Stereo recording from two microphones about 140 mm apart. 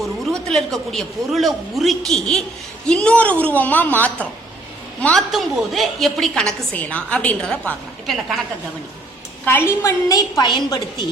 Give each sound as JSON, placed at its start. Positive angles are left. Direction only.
{"t": 0.0, "sound": "a man's voice", "side_deg": 0}
{"t": 9.4, "sound": "a woman's voice", "side_deg": 15}